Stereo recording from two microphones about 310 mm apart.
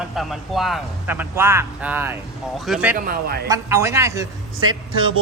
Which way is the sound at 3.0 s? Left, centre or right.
Right.